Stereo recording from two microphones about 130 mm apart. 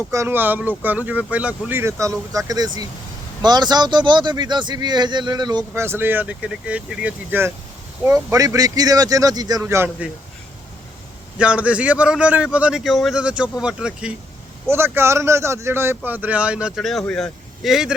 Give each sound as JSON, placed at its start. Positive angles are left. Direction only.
{"t": 0.1, "sound": "a man's voice", "side_deg": -20}
{"t": 5.7, "sound": "speech", "side_deg": -20}
{"t": 8.0, "sound": "speech", "side_deg": -25}
{"t": 11.3, "sound": "speech", "side_deg": -10}
{"t": 14.7, "sound": "speech", "side_deg": -20}